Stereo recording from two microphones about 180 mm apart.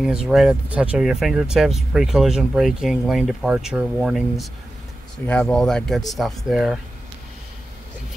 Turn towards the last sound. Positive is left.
turn(degrees=0)  # may be behind; listen again after turning